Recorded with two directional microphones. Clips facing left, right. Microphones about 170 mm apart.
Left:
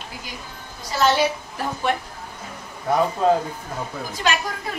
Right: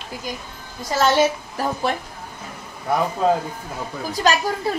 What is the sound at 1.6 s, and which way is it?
Speech, 35° right (ahead or behind).